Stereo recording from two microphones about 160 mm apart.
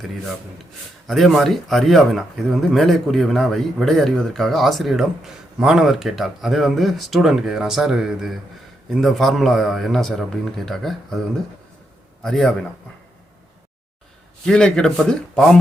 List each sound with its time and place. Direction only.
1.0 s speech: centre (ahead or behind)
12.2 s speech: 5° left (ahead or behind)
14.4 s speech: 5° left (ahead or behind)